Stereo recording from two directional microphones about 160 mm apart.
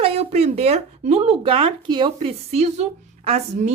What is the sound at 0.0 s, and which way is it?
A woman's voice, 40° right (ahead or behind).